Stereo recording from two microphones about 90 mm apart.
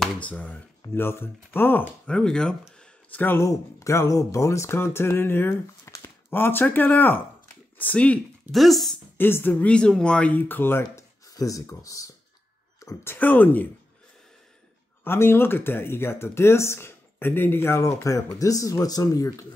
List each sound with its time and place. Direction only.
0.2 s speech: 15° left (ahead or behind)
2.0 s speech: 10° left (ahead or behind)
3.3 s speech: 30° left (ahead or behind); by 8.2 s 15° left (ahead or behind)
8.5 s speech: centre (ahead or behind)
9.2 s speech: 20° left (ahead or behind)
11.2 s speech: 40° left (ahead or behind)
13.0 s speech: 20° left (ahead or behind)
15.0 s speech: 25° left (ahead or behind)